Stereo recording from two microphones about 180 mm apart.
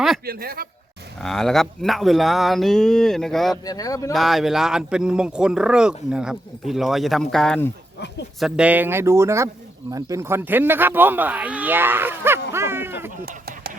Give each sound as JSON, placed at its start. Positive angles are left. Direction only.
{"t": 0.3, "sound": "speech", "side_deg": -55}
{"t": 1.2, "sound": "speech", "side_deg": 0}
{"t": 3.7, "sound": "speech", "side_deg": 20}
{"t": 4.1, "sound": "speech", "side_deg": 0}